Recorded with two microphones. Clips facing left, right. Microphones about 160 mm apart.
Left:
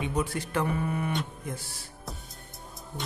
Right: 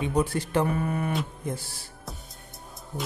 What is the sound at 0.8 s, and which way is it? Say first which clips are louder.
Mantra: right 2 dB; 45° right (ahead or behind).